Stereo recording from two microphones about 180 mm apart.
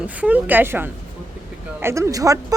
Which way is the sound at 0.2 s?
10° right (ahead or behind).